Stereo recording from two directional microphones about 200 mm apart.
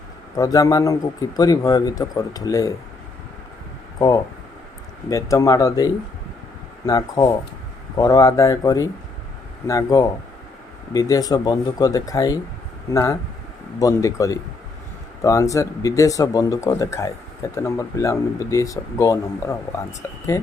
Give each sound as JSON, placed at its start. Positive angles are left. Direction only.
{"t": 0.3, "sound": "a man's voice", "side_deg": 20}
{"t": 3.9, "sound": "a man's voice", "side_deg": 20}